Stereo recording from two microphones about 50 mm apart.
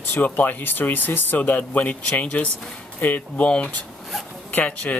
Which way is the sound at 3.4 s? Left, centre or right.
Left.